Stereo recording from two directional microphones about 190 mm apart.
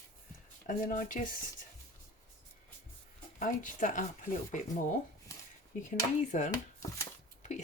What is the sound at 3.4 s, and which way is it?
Speech, 45° left (ahead or behind).